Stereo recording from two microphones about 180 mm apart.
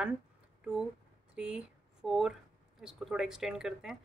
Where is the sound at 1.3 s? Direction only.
5° right (ahead or behind).